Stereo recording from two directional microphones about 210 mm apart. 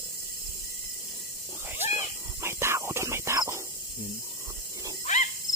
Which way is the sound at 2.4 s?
10° right (ahead or behind).